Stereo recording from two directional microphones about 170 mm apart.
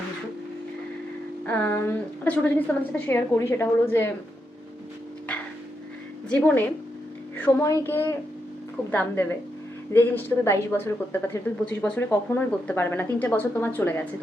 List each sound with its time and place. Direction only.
1.5 s speech: 10° left (ahead or behind)
5.3 s a sound: 5° left (ahead or behind)
6.2 s a woman's voice: 10° left (ahead or behind)